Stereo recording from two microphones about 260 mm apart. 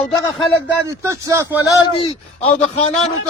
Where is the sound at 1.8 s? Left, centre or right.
Left.